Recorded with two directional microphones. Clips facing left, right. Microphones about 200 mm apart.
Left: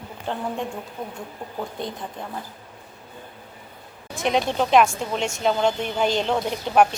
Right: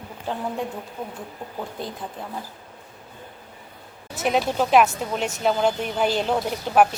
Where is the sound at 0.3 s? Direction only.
5° right (ahead or behind).